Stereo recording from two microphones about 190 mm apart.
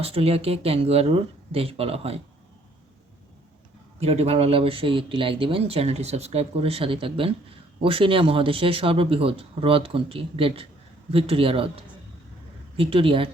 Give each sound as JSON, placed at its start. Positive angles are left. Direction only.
{"t": 0.0, "sound": "speech", "side_deg": -30}
{"t": 4.0, "sound": "speech", "side_deg": -30}